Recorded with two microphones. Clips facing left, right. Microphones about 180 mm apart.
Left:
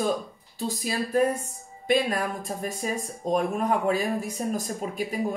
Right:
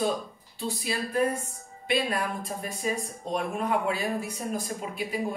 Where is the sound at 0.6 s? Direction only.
40° left (ahead or behind).